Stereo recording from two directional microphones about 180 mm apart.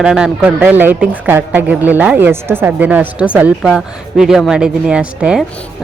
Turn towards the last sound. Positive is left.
turn(degrees=-5)  # may be behind; listen again after turning